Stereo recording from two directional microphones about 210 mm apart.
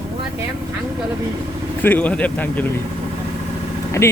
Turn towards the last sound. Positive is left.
turn(degrees=15)  # may be behind; listen again after turning